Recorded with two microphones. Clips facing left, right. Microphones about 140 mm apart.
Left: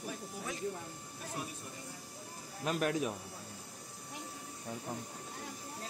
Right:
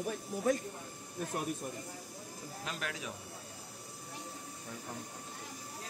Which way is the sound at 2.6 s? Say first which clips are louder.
Left 10 dB; 45° left (ahead or behind).